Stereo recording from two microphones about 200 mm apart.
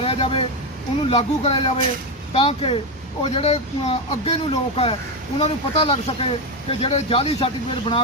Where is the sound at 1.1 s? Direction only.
30° left (ahead or behind).